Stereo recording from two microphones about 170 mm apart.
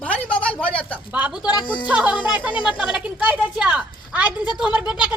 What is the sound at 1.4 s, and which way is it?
Speech, 25° left (ahead or behind).